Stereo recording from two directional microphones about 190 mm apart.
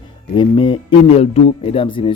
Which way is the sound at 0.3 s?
25° left (ahead or behind).